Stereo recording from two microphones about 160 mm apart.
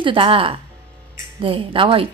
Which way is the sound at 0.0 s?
30° right (ahead or behind).